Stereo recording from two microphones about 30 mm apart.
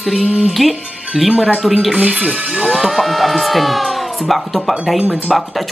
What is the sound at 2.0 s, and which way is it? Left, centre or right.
Speech, right.